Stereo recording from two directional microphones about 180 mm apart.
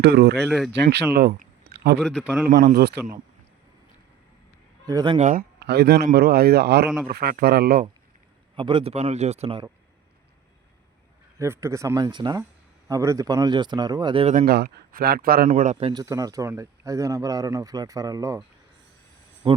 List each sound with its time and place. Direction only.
0.0 s speech: 65° right (ahead or behind)
0.3 s a man's voice: centre (ahead or behind)
0.7 s speech: 70° right (ahead or behind)
1.6 s a sound: 60° right (ahead or behind)
2.0 s a man's voice: centre (ahead or behind)
2.6 s speech: 60° right (ahead or behind)
4.9 s speech: 20° right (ahead or behind)
5.1 s speech: 45° right (ahead or behind)
8.5 s a man's voice: 30° right (ahead or behind)
11.3 s speech: 15° right (ahead or behind)
14.3 s speech: 60° right (ahead or behind)
15.4 s a man's voice: 40° right (ahead or behind)
15.9 s speech: 20° right (ahead or behind)
19.4 s speech: 25° right (ahead or behind)